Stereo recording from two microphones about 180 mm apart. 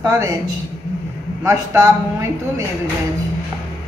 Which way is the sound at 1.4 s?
20° right (ahead or behind).